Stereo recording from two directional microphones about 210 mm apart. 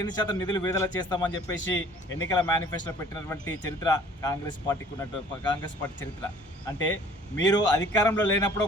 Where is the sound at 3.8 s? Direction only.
15° left (ahead or behind).